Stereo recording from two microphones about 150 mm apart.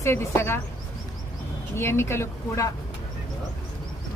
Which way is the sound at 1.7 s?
15° left (ahead or behind).